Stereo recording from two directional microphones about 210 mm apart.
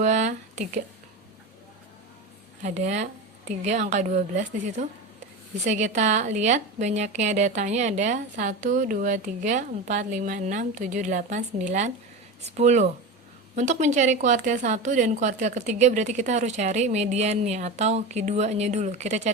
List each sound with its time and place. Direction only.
0.0 s speech: 35° right (ahead or behind)
2.6 s a woman's voice: 35° right (ahead or behind)